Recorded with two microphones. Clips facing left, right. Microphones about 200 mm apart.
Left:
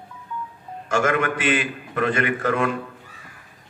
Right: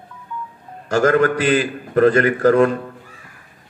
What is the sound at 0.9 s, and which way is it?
A man's voice, 40° right (ahead or behind).